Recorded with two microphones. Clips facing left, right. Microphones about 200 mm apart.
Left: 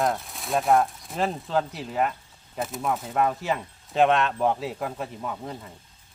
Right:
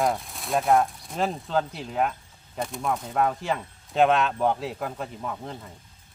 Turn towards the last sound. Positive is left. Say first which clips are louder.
# left 1 dB
turn(degrees=0)  # may be behind; listen again after turning